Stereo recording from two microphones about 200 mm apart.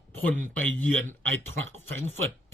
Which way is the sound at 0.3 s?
10° left (ahead or behind).